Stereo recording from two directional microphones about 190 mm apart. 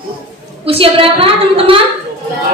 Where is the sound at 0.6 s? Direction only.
30° right (ahead or behind).